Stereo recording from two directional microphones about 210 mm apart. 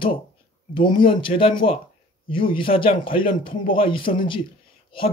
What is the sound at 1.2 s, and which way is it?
Speech, 25° left (ahead or behind).